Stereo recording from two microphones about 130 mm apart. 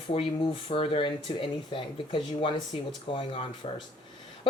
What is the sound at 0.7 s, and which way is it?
Speech, 45° left (ahead or behind).